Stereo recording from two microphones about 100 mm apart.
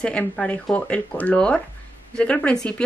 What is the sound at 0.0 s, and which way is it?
Speech, 10° left (ahead or behind).